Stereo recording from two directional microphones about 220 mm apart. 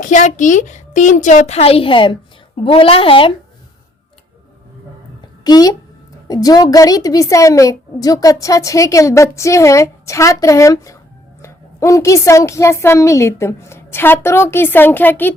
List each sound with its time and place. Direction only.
0.0 s a woman's voice: 35° left (ahead or behind)
5.4 s a woman's voice: 15° left (ahead or behind)